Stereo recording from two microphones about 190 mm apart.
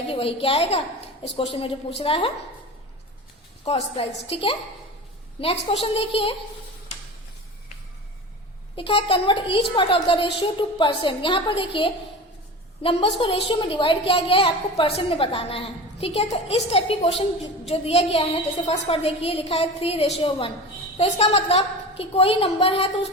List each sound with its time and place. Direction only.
0.1 s a woman's voice: 30° left (ahead or behind)
3.6 s a woman's voice: 30° left (ahead or behind)
8.7 s a woman's voice: 30° left (ahead or behind)